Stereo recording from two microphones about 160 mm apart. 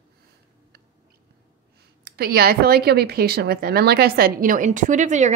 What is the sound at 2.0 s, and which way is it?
Speech, 70° right (ahead or behind).